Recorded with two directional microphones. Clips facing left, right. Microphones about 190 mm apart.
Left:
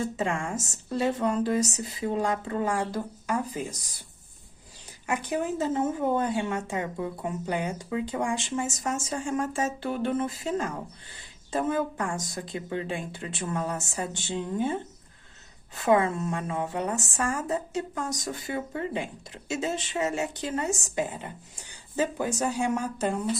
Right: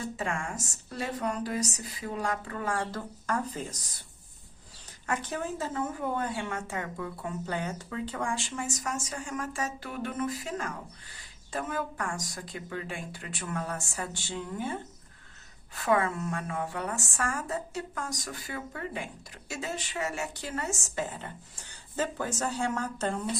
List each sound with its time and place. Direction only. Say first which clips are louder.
0.0 s a woman's voice: left 5 dB; 25° left (ahead or behind)
5.0 s a woman's voice: left 4 dB; 10° left (ahead or behind)